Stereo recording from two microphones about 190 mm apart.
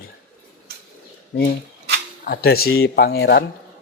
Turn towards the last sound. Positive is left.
turn(degrees=55)  # may be behind; listen again after turning